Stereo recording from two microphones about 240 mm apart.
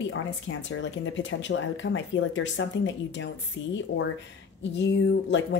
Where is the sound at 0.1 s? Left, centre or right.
Left.